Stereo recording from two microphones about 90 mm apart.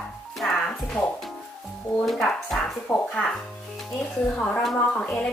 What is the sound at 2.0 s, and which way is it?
Speech, centre (ahead or behind).